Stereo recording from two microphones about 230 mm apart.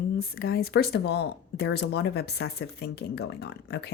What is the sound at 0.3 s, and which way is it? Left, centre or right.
Speech, left.